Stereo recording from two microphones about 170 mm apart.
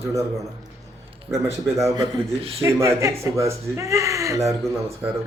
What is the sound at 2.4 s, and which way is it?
Speech, 35° right (ahead or behind).